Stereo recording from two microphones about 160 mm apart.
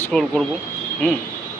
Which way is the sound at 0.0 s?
5° left (ahead or behind).